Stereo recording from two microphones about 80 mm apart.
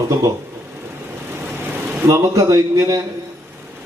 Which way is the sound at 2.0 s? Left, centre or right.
Right.